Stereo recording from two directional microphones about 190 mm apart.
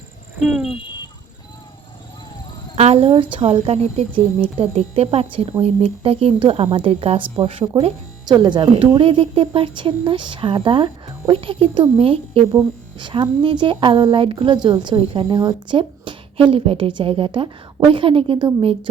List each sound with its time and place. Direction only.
0.3 s speech: 5° right (ahead or behind)
2.7 s a sound: 35° right (ahead or behind)
3.3 s speech: 30° right (ahead or behind)